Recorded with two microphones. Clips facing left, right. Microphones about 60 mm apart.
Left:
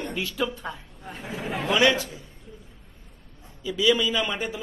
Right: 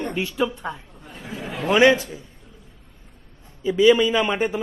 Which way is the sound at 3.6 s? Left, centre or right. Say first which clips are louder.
Right 7 dB; right.